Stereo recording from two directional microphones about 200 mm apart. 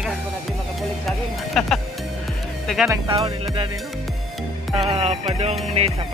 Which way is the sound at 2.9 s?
15° right (ahead or behind).